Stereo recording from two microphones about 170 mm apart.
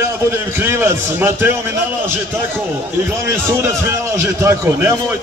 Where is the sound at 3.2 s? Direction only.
15° right (ahead or behind).